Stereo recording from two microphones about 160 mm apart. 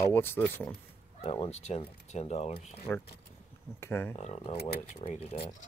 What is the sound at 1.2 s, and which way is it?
Speech, 40° left (ahead or behind).